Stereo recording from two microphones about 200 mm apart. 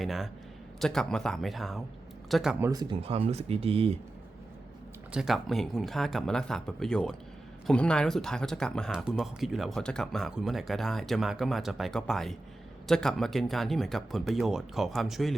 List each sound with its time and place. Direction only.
0.0 s speech: centre (ahead or behind)
2.6 s speech: 20° right (ahead or behind)
5.1 s speech: centre (ahead or behind)